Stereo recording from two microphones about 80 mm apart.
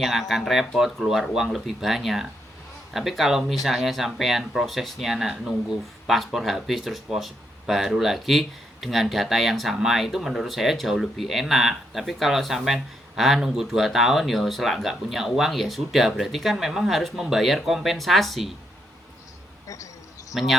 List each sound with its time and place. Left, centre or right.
0.0 s speech: centre
19.6 s a sound: left
20.3 s speech: centre